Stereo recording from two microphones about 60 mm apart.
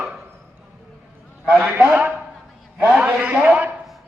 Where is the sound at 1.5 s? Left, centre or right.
Right.